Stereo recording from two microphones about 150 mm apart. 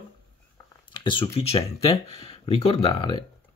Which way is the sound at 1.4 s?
40° left (ahead or behind).